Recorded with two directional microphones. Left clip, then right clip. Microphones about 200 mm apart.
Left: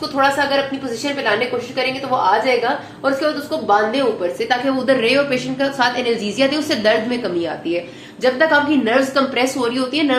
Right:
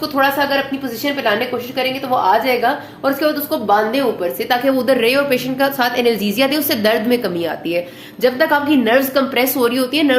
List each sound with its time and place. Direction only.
0.2 s a woman's voice: 45° right (ahead or behind)
2.0 s a woman's voice: 45° right (ahead or behind)